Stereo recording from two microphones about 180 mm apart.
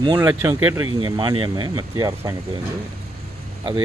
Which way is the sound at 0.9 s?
25° right (ahead or behind).